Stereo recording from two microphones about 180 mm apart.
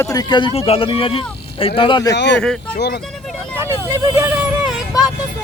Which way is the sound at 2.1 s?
70° left (ahead or behind).